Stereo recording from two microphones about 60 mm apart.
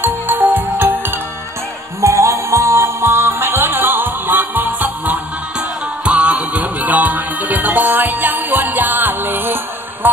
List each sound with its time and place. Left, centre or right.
0.0 s music: right
2.0 s music: right